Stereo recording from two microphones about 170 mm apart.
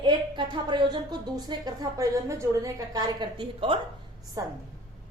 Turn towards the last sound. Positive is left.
turn(degrees=-20)  # may be behind; listen again after turning